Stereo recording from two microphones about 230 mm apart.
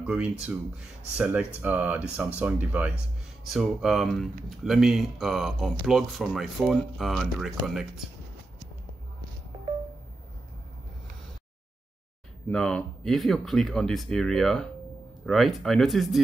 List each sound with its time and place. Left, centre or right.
0.0 s speech: centre
12.4 s speech: centre